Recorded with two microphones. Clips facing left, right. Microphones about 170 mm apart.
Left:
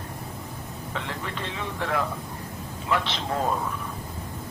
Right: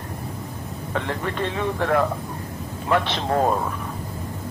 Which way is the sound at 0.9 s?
55° right (ahead or behind).